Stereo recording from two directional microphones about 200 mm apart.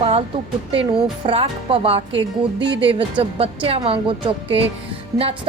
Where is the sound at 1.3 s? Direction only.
25° right (ahead or behind).